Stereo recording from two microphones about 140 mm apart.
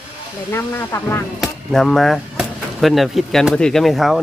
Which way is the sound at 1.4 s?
Centre (ahead or behind).